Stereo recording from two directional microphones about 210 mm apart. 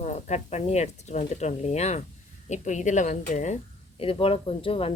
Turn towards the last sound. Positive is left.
turn(degrees=25)  # may be behind; listen again after turning